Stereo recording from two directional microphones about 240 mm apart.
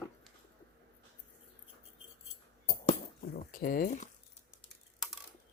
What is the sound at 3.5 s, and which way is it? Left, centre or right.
Speech, left.